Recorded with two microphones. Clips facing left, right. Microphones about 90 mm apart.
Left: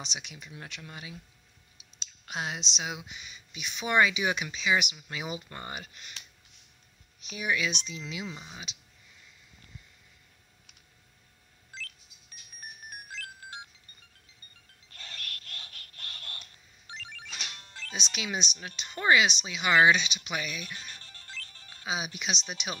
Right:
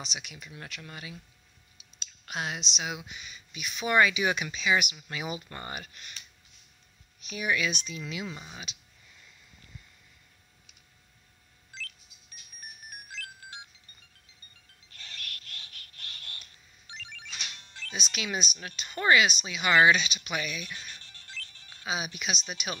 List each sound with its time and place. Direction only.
0.0 s speech: 30° left (ahead or behind)
7.2 s speech: 15° left (ahead or behind)
8.3 s speech: 5° right (ahead or behind)
12.9 s music: 40° left (ahead or behind)
14.9 s a sound: 40° left (ahead or behind); by 18.6 s 25° left (ahead or behind)
18.6 s speech: 25° left (ahead or behind)
18.9 s speech: 15° left (ahead or behind)
21.0 s music: 40° left (ahead or behind)
21.8 s speech: 25° left (ahead or behind)